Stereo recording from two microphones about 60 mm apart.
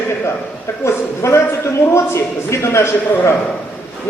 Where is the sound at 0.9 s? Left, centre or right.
Left.